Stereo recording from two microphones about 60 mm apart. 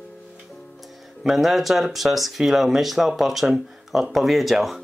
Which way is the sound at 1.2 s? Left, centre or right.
Centre.